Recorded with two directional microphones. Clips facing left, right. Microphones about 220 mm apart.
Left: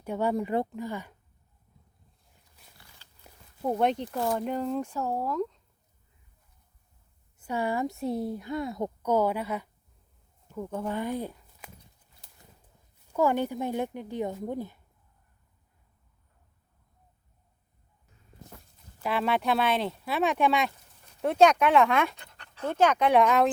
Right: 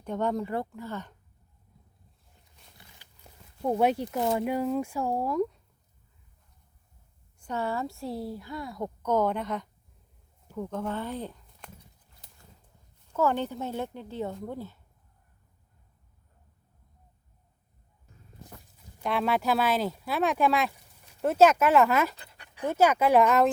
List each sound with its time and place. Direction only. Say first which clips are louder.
0.0 s speech: left 1 dB; 10° left (ahead or behind)
3.2 s zipper: right 1 dB; centre (ahead or behind)
4.4 s speech: right 2 dB; 10° right (ahead or behind)
7.3 s speech: left 2 dB; 10° left (ahead or behind)
9.0 s speech: even; 10° left (ahead or behind)
13.1 s speech: left 2 dB; 10° left (ahead or behind)
19.0 s speech: even; centre (ahead or behind)